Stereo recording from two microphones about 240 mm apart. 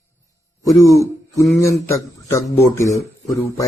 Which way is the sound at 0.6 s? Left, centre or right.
Centre.